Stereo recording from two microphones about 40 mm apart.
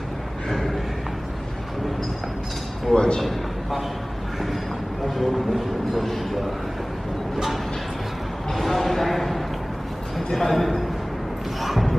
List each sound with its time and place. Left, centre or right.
0.4 s a sound: centre
2.9 s a man's voice: left
3.2 s a man's voice: centre
5.1 s speech: centre
8.5 s speech: centre